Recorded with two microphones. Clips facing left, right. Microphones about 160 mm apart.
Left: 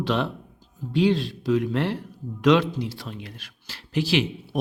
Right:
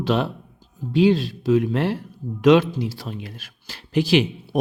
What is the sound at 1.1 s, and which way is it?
Speech, 5° right (ahead or behind).